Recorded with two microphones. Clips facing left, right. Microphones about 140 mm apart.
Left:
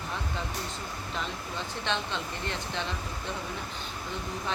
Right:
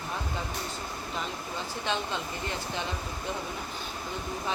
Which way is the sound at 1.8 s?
5° right (ahead or behind).